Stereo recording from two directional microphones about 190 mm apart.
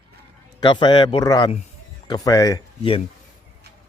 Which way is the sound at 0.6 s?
25° left (ahead or behind).